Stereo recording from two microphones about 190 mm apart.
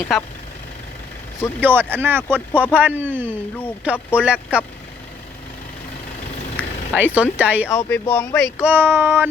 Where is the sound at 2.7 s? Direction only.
10° right (ahead or behind).